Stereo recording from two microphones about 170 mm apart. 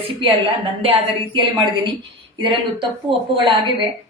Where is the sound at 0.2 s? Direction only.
35° right (ahead or behind).